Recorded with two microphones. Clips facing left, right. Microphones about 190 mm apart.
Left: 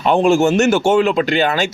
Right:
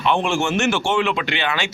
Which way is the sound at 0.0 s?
40° left (ahead or behind).